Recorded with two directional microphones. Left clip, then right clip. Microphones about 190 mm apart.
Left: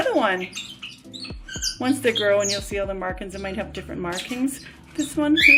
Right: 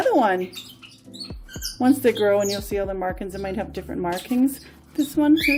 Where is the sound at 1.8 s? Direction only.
55° right (ahead or behind).